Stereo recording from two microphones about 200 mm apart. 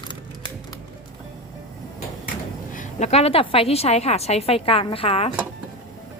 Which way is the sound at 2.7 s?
35° left (ahead or behind).